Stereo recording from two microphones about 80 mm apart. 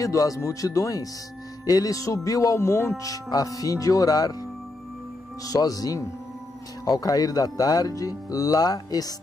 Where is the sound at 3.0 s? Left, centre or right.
Left.